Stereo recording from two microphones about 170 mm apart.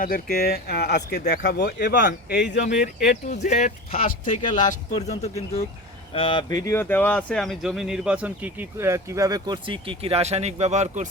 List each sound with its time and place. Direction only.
0.0 s speech: 60° left (ahead or behind)
3.0 s speech: 45° left (ahead or behind); by 11.1 s 45° right (ahead or behind)